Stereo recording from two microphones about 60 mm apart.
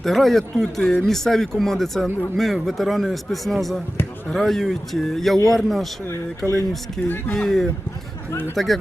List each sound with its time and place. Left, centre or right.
0.0 s a man's voice: centre
0.6 s speech: centre
1.0 s a man's voice: centre
6.4 s speech: right
7.0 s a man's voice: centre